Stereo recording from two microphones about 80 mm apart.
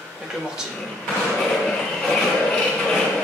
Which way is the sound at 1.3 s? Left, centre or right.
Centre.